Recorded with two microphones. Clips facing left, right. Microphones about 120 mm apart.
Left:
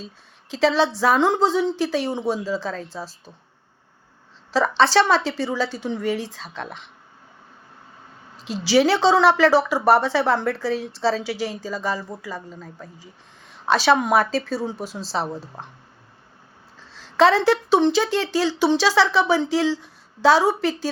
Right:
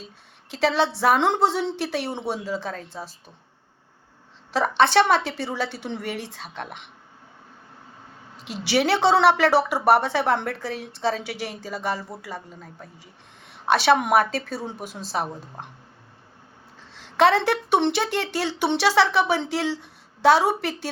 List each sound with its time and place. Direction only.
0.5 s a woman's voice: 60° right (ahead or behind)
4.5 s a woman's voice: 55° right (ahead or behind)
8.4 s a woman's voice: 60° right (ahead or behind)
13.5 s a woman's voice: 60° right (ahead or behind)
16.9 s a woman's voice: 60° right (ahead or behind)